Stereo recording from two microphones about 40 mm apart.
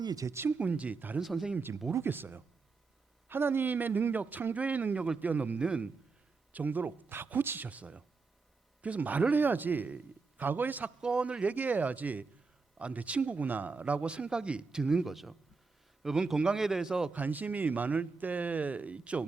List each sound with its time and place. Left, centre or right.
0.5 s speech: right
1.2 s speech: centre
2.0 s a man's voice: right
3.2 s a man's voice: right
5.5 s a man's voice: right
6.5 s a man's voice: right
7.7 s speech: right
11.0 s a man's voice: right
11.5 s a man's voice: right; by 15.1 s centre
15.1 s speech: centre
16.2 s a man's voice: right
17.2 s speech: right